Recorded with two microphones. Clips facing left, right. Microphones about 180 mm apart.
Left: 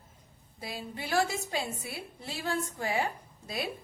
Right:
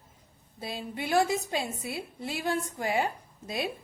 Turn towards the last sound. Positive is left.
turn(degrees=-20)  # may be behind; listen again after turning